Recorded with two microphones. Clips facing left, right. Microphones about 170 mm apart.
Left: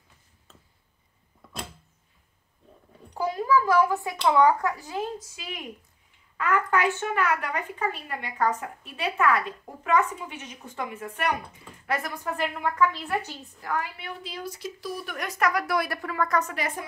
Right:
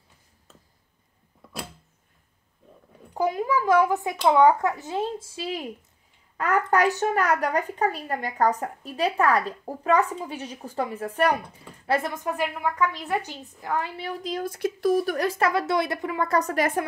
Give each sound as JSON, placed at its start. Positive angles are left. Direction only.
{"t": 3.2, "sound": "a child's voice", "side_deg": -20}
{"t": 13.9, "sound": "speech", "side_deg": -40}
{"t": 16.3, "sound": "a woman's voice", "side_deg": -40}